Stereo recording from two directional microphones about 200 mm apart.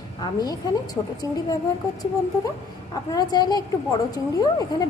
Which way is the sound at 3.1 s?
20° left (ahead or behind).